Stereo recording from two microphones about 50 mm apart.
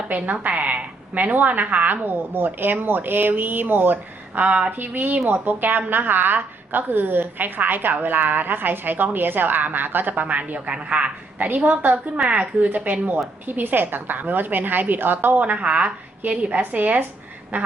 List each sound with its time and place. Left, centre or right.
0.4 s a woman's voice: right
4.4 s a woman's voice: right